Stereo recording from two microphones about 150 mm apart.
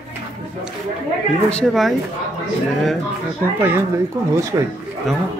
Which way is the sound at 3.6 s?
15° right (ahead or behind).